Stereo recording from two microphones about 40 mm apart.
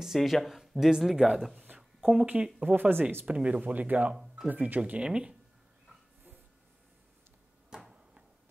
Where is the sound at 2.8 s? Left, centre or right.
Right.